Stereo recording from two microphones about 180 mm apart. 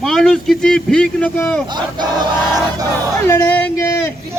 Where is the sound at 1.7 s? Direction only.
25° right (ahead or behind).